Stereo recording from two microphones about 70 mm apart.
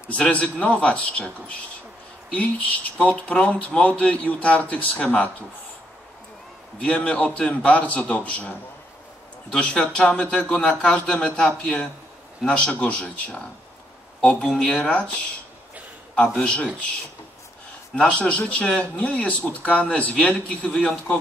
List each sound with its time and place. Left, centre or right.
0.2 s speech: centre
2.3 s speech: centre
6.8 s a man's voice: centre
16.2 s a man's voice: centre
17.9 s a man's voice: centre